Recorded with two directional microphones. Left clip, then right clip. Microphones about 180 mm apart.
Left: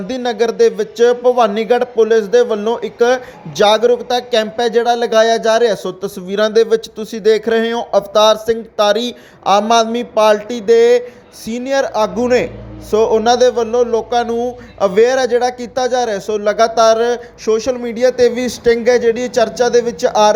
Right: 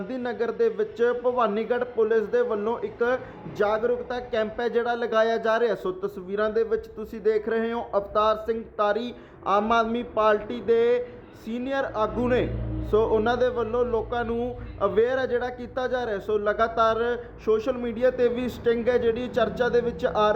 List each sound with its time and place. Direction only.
0.1 s speech: 30° left (ahead or behind)